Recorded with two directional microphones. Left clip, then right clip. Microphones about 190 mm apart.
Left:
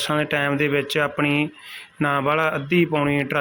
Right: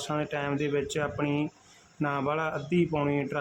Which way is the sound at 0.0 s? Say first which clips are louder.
Left 10 dB; 15° left (ahead or behind).